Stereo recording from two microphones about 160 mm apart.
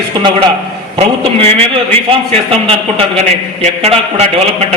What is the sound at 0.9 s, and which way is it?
A man's voice, 40° right (ahead or behind).